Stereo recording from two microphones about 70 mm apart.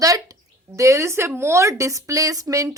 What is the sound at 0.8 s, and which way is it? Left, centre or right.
A woman's voice, right.